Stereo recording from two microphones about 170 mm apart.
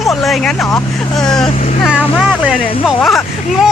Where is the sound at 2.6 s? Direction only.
30° left (ahead or behind).